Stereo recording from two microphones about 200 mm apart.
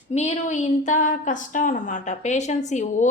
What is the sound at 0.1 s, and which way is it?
A woman's voice, 35° left (ahead or behind).